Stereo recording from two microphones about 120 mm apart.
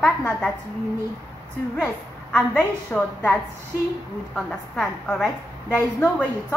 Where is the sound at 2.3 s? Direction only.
15° left (ahead or behind).